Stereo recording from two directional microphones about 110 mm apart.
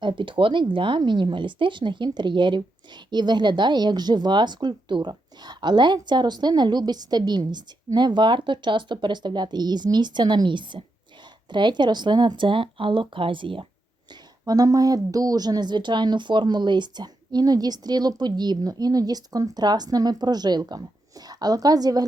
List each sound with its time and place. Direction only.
0.0 s a woman's voice: 50° right (ahead or behind)
14.4 s speech: 35° right (ahead or behind)